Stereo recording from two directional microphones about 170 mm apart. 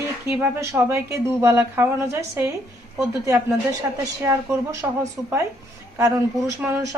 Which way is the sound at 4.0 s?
15° right (ahead or behind).